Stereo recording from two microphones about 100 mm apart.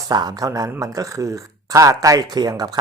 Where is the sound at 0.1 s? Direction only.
40° right (ahead or behind).